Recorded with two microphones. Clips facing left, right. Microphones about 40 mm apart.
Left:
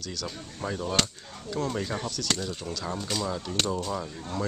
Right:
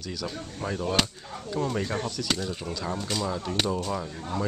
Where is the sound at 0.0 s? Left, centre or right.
Centre.